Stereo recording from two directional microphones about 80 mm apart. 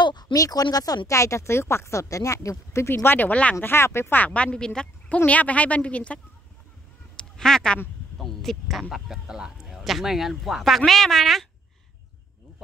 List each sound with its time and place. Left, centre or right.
0.0 s speech: left; by 3.5 s centre
3.6 s speech: left; by 6.2 s centre
7.2 s duck: centre
8.2 s speech: centre